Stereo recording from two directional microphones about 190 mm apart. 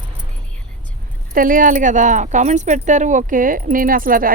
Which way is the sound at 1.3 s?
45° right (ahead or behind).